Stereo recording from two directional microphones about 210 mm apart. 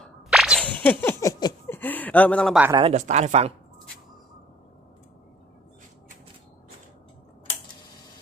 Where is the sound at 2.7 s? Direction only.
25° right (ahead or behind).